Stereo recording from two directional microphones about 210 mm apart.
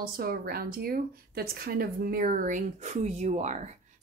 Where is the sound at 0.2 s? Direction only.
45° right (ahead or behind).